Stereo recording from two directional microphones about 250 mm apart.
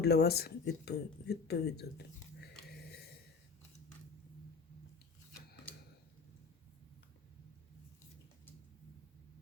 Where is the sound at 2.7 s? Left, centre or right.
Left.